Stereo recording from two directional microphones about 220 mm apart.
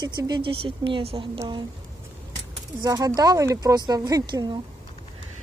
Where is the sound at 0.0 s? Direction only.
20° right (ahead or behind).